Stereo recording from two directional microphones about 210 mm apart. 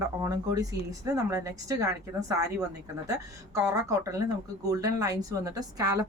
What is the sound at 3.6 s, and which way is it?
A woman's voice, 15° right (ahead or behind).